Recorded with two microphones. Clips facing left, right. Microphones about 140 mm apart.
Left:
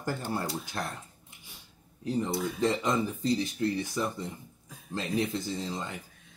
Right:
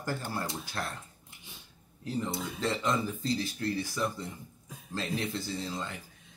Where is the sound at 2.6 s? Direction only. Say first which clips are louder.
Left 2 dB; 20° left (ahead or behind).